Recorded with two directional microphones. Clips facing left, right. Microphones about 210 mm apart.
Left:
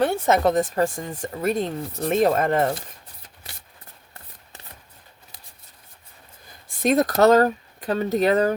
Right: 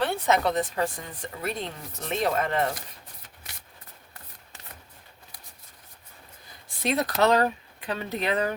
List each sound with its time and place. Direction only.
0.0 s speech: 45° left (ahead or behind)
6.7 s speech: 45° left (ahead or behind)